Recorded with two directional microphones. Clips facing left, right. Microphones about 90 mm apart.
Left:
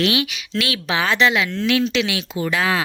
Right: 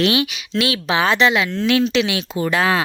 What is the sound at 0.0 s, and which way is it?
A woman's voice, 30° right (ahead or behind).